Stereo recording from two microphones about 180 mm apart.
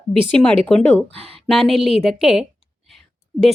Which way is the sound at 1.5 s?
Centre (ahead or behind).